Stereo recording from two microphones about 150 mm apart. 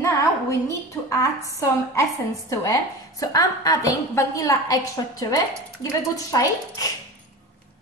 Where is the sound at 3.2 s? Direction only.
25° left (ahead or behind).